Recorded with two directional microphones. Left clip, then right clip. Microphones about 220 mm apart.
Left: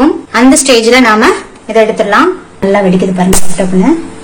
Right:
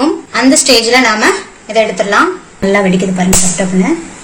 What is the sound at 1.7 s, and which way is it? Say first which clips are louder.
A woman's voice: left 3 dB; centre (ahead or behind).